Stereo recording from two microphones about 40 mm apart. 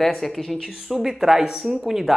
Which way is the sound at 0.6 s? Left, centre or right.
Centre.